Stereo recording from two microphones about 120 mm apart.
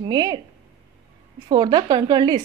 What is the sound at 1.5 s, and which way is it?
Speech, 40° right (ahead or behind).